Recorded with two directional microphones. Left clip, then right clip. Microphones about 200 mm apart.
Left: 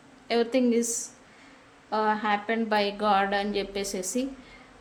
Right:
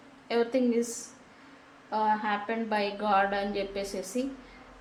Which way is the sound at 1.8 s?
35° left (ahead or behind).